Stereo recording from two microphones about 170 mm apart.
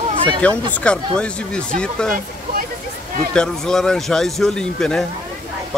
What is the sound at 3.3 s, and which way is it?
A man's voice, 5° left (ahead or behind).